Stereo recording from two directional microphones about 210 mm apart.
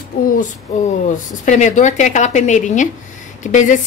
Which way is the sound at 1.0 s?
35° left (ahead or behind).